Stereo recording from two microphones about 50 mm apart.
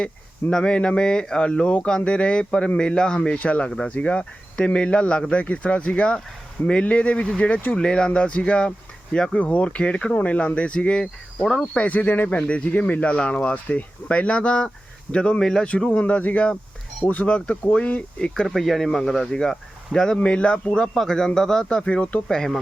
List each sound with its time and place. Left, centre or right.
0.5 s speech: centre
9.4 s speech: left
12.4 s speech: left
15.9 s speech: left
18.4 s speech: centre; by 22.2 s left
22.3 s speech: centre